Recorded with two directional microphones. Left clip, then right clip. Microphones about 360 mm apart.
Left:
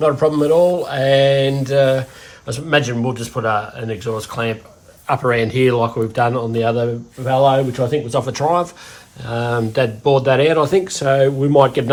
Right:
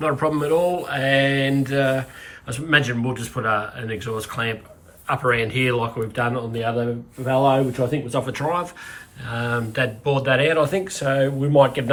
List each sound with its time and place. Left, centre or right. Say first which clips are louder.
0.0 s speech: left 7 dB; centre